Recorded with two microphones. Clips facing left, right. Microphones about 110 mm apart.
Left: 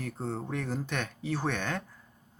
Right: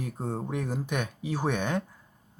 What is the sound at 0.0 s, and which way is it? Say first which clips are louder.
Speech: right 2 dB; 15° right (ahead or behind).